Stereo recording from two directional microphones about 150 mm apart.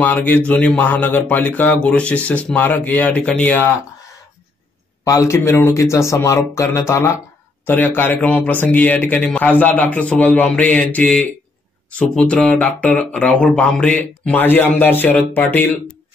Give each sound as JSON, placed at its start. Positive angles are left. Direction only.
{"t": 0.0, "sound": "speech", "side_deg": 10}
{"t": 5.0, "sound": "speech", "side_deg": 20}